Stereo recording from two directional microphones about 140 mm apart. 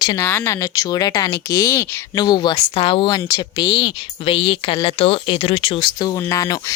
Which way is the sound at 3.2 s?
25° left (ahead or behind).